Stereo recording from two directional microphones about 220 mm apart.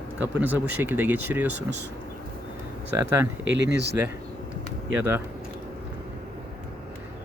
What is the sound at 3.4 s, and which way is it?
Speech, 55° right (ahead or behind).